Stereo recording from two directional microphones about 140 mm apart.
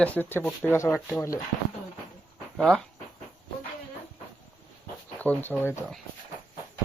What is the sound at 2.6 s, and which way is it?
Speech, 5° left (ahead or behind).